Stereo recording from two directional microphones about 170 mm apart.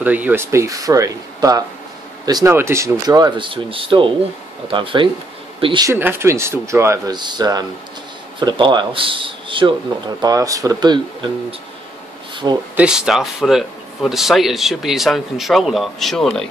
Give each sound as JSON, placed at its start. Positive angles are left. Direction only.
{"t": 0.0, "sound": "a man's voice", "side_deg": -10}
{"t": 5.9, "sound": "a man's voice", "side_deg": -15}
{"t": 12.7, "sound": "speech", "side_deg": -5}